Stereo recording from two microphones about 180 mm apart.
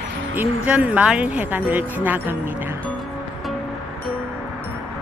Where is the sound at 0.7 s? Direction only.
10° right (ahead or behind).